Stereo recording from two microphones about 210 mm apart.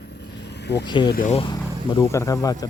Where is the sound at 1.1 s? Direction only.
35° left (ahead or behind).